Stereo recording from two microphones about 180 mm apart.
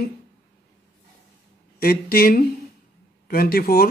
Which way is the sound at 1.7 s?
55° left (ahead or behind).